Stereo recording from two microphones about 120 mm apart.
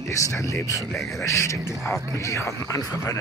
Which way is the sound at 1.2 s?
25° left (ahead or behind).